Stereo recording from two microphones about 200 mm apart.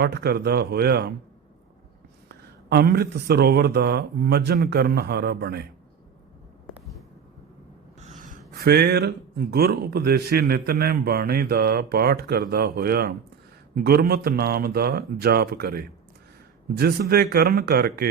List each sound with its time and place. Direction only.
0.0 s speech: 50° right (ahead or behind)
2.3 s speech: 55° right (ahead or behind)
6.7 s a sound: centre (ahead or behind)
8.0 s speech: 40° right (ahead or behind)